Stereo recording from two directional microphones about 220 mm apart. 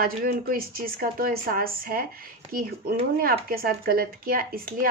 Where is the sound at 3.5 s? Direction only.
40° right (ahead or behind).